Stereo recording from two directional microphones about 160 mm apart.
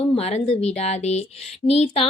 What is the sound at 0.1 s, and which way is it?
A woman's voice, 40° left (ahead or behind).